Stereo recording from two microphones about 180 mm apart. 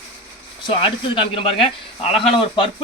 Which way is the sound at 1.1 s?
30° left (ahead or behind).